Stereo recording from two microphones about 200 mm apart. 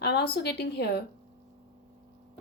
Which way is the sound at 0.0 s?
55° left (ahead or behind).